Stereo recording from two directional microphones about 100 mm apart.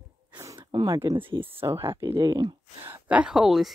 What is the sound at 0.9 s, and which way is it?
Speech, 35° right (ahead or behind).